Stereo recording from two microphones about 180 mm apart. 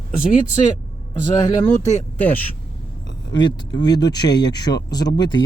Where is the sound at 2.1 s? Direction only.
10° left (ahead or behind).